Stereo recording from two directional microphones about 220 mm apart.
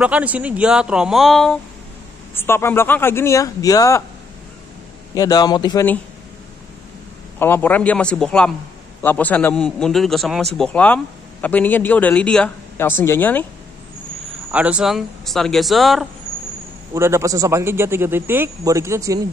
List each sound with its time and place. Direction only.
0.0 s a man's voice: 5° right (ahead or behind); by 4.0 s 15° left (ahead or behind)
5.1 s speech: 15° left (ahead or behind)
7.3 s a man's voice: 10° left (ahead or behind)
14.5 s a man's voice: 5° right (ahead or behind)
16.9 s a man's voice: 15° right (ahead or behind)